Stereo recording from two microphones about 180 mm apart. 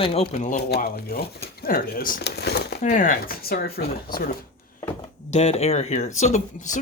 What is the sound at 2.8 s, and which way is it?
Speech, 45° left (ahead or behind).